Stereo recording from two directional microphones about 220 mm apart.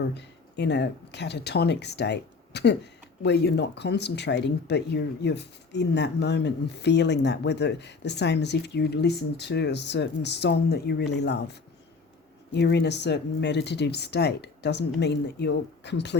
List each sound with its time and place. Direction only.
0.1 s speech: 50° left (ahead or behind)
12.5 s speech: 50° left (ahead or behind)